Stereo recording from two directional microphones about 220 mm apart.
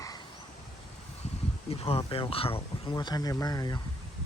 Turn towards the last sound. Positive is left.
turn(degrees=20)  # may be behind; listen again after turning